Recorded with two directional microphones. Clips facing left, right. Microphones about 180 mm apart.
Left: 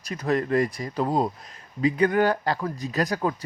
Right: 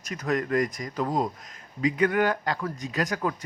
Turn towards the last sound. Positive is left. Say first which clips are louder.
# left 3 dB
turn(degrees=30)  # may be behind; listen again after turning